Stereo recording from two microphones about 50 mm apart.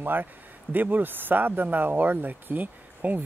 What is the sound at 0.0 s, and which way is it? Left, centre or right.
Speech, right.